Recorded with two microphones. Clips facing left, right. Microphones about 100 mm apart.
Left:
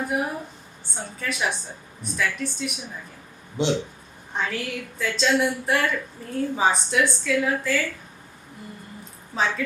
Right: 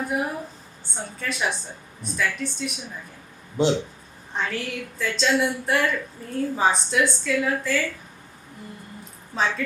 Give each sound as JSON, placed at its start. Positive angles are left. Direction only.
{"t": 0.0, "sound": "a woman's voice", "side_deg": 0}
{"t": 3.6, "sound": "speech", "side_deg": -45}
{"t": 4.4, "sound": "a woman's voice", "side_deg": 0}
{"t": 9.3, "sound": "a woman's voice", "side_deg": 5}